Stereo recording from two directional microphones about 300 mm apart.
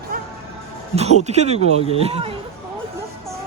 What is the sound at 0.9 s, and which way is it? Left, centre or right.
Speech, right.